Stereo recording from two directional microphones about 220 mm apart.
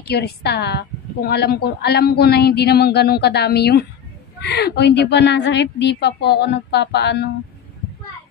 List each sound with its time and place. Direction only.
0.0 s a woman's voice: 45° left (ahead or behind)